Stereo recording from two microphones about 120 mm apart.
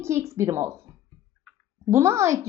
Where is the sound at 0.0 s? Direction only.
25° right (ahead or behind).